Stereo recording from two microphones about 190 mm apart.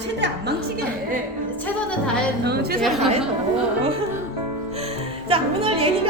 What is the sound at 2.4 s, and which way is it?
Speech, 55° right (ahead or behind).